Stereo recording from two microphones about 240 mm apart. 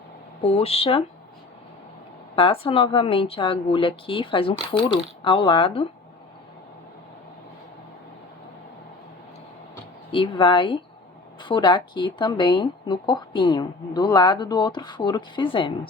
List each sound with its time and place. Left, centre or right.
0.4 s speech: left
2.3 s speech: left
10.1 s speech: left